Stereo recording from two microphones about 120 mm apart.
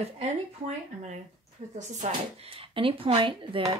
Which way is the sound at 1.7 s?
85° right.